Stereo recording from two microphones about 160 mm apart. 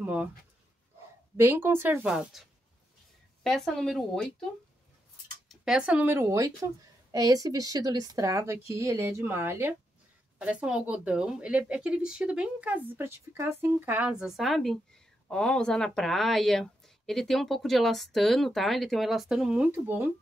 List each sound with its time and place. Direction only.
0.0 s speech: 10° right (ahead or behind)
1.3 s speech: 15° right (ahead or behind)
3.4 s a woman's voice: centre (ahead or behind)
5.5 s a woman's voice: 5° right (ahead or behind)